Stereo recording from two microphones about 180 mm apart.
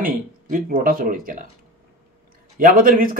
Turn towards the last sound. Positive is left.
turn(degrees=-50)  # may be behind; listen again after turning